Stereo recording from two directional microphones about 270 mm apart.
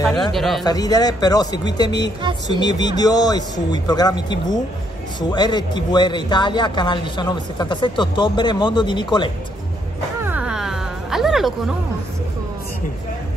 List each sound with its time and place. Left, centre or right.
0.0 s speech: centre
0.3 s speech: centre
0.7 s a man's voice: centre
10.2 s music: centre